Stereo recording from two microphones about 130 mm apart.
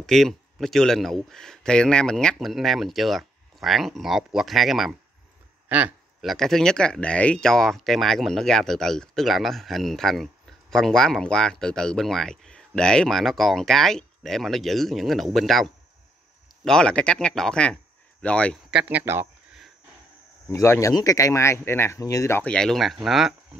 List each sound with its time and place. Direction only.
0.0 s speech: centre (ahead or behind)
5.7 s a man's voice: 10° right (ahead or behind)
6.2 s speech: 5° left (ahead or behind)
18.7 s speech: 10° right (ahead or behind)
20.4 s speech: 20° left (ahead or behind)
22.4 s speech: 5° left (ahead or behind)